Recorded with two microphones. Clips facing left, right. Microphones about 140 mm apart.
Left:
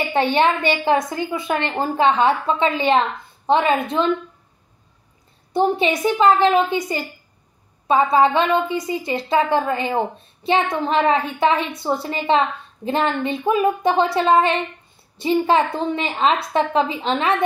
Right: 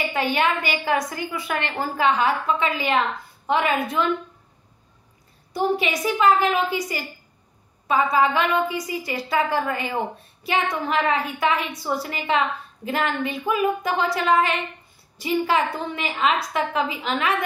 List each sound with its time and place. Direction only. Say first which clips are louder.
0.1 s a woman's voice: left 6 dB; 30° left (ahead or behind)
5.5 s a woman's voice: left 4 dB; 25° left (ahead or behind)